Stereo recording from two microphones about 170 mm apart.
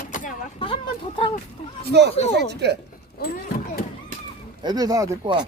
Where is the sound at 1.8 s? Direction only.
75° right (ahead or behind).